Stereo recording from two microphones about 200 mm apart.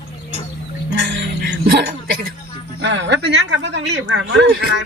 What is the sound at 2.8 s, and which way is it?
Speech, 60° right (ahead or behind).